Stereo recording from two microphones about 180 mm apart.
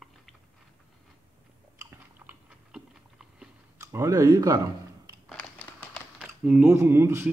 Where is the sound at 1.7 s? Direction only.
15° right (ahead or behind).